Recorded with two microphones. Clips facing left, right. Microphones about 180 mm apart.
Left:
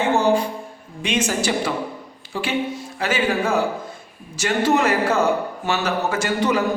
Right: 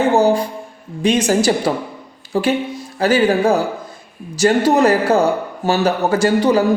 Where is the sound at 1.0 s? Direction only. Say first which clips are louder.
Right 7 dB; 35° right (ahead or behind).